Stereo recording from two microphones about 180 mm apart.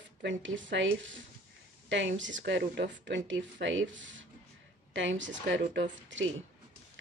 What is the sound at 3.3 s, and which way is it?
Speech, 90° right.